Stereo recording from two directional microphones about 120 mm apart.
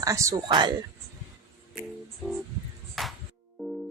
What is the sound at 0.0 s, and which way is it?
Speech, 25° right (ahead or behind).